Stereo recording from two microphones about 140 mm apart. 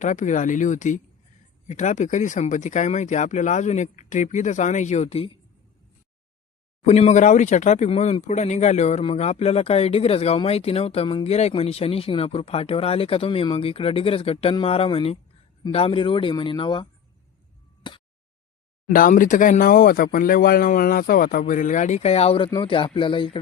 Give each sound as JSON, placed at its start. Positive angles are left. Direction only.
{"t": 0.0, "sound": "speech", "side_deg": 60}
{"t": 6.8, "sound": "speech", "side_deg": 55}
{"t": 17.8, "sound": "a sound", "side_deg": 35}
{"t": 18.9, "sound": "speech", "side_deg": 80}